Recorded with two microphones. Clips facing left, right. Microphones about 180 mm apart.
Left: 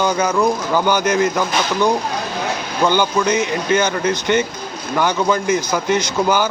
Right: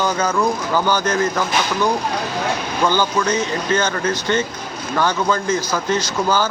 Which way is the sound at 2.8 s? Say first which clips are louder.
Left 2 dB; 15° left (ahead or behind).